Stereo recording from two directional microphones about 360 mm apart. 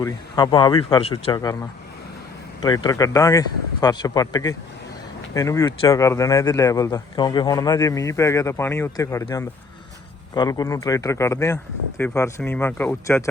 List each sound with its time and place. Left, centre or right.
0.0 s speech: centre
2.6 s speech: centre